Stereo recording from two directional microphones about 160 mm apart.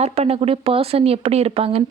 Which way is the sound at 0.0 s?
40° right (ahead or behind).